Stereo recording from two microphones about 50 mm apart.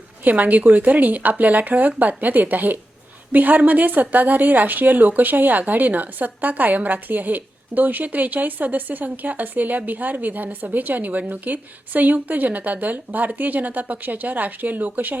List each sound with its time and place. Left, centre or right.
0.3 s speech: right